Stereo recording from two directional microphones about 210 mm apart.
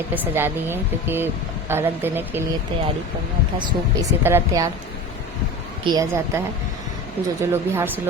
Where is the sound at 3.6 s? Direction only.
15° right (ahead or behind).